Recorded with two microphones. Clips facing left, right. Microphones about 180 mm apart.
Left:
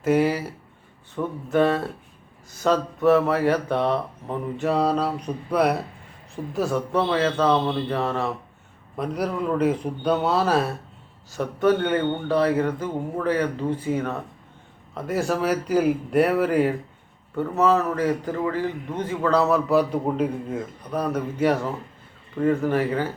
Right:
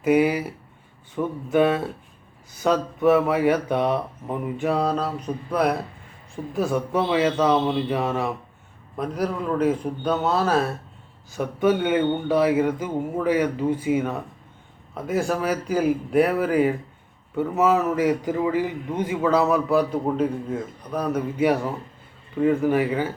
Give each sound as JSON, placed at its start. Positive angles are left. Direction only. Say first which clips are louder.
{"t": 0.0, "sound": "a man's voice", "louder": "right 1 dB", "side_deg": -10}
{"t": 4.6, "sound": "a man's voice", "louder": "left 2 dB", "side_deg": 0}
{"t": 14.9, "sound": "a man's voice", "louder": "even", "side_deg": 0}
{"t": 17.5, "sound": "a man's voice", "louder": "even", "side_deg": -15}